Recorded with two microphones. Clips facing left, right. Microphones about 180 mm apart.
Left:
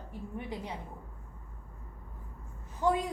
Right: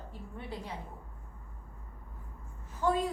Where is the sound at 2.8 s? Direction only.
15° left (ahead or behind).